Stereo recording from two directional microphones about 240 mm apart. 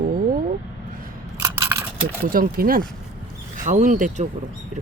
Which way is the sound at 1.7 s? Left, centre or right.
Centre.